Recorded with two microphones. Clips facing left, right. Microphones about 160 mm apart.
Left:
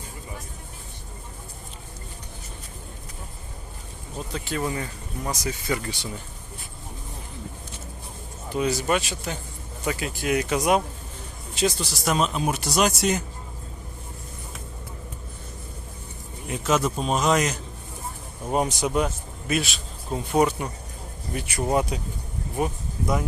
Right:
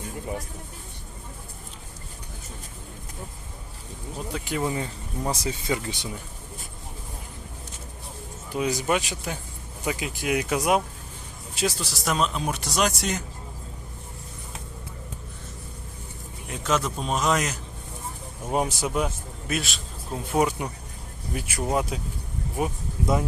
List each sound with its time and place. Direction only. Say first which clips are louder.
4.3 s speech: right 1 dB; 10° right (ahead or behind)
8.5 s speech: left 1 dB; 10° right (ahead or behind); by 13.2 s 5° left (ahead or behind)
16.5 s a man's voice: left 3 dB; 5° left (ahead or behind)